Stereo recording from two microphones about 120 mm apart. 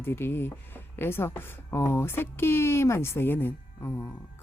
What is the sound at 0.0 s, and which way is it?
Speech, 20° left (ahead or behind).